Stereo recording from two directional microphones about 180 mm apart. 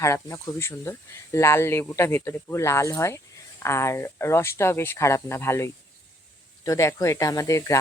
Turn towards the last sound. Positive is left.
turn(degrees=15)  # may be behind; listen again after turning